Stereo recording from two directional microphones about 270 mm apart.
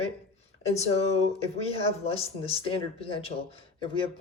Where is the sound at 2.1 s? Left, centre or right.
Left.